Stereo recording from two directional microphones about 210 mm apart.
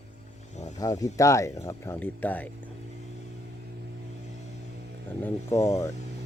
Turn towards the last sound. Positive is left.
turn(degrees=15)  # may be behind; listen again after turning